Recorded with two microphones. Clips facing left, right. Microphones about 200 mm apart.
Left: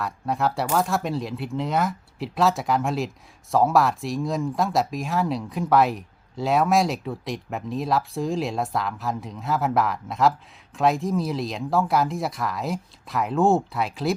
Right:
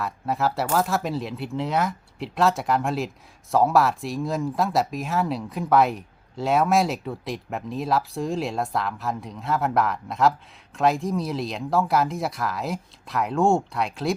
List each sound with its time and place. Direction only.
0.0 s speech: centre (ahead or behind)